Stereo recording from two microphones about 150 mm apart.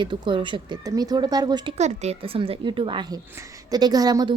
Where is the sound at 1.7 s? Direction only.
45° right (ahead or behind).